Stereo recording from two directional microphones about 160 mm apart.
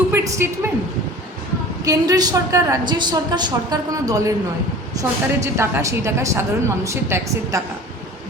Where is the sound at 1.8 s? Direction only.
20° right (ahead or behind).